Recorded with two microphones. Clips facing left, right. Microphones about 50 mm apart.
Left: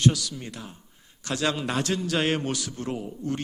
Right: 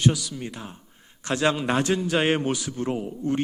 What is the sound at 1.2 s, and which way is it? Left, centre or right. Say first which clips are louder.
A man's voice: right 4 dB; right.